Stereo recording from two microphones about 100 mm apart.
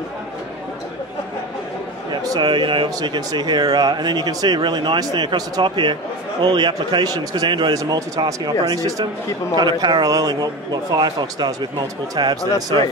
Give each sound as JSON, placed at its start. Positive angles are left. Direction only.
{"t": 2.2, "sound": "speech", "side_deg": -45}
{"t": 7.7, "sound": "speech", "side_deg": -40}